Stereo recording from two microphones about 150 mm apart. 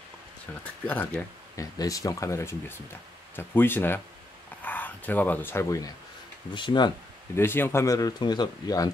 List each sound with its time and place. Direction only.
0.8 s speech: 10° left (ahead or behind)
1.6 s speech: 25° left (ahead or behind)
6.5 s speech: 30° left (ahead or behind)
7.3 s speech: 15° left (ahead or behind)